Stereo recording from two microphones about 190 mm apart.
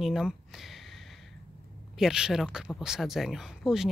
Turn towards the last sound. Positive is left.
turn(degrees=-5)  # may be behind; listen again after turning